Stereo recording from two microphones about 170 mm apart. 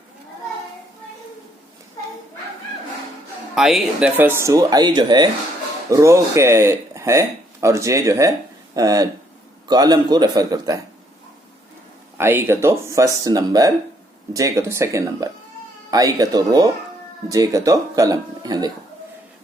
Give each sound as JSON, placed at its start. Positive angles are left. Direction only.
{"t": 3.5, "sound": "speech", "side_deg": 0}
{"t": 12.1, "sound": "speech", "side_deg": -15}